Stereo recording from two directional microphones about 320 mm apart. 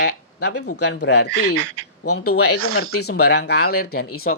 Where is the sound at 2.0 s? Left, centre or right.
Left.